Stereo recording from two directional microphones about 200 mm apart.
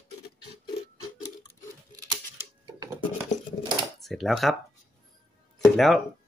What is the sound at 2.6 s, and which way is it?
Dishes, 20° right (ahead or behind).